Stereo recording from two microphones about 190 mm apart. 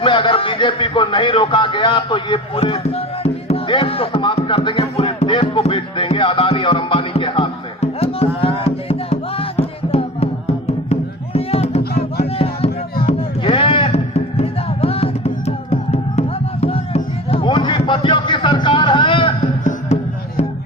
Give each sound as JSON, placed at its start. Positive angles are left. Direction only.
{"t": 0.0, "sound": "a sound", "side_deg": 25}
{"t": 8.4, "sound": "music", "side_deg": 30}
{"t": 11.3, "sound": "music", "side_deg": 35}